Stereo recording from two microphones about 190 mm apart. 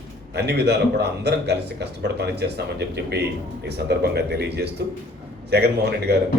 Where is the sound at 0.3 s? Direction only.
60° right (ahead or behind).